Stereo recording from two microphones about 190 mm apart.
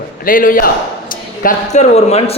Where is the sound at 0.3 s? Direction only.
45° left (ahead or behind).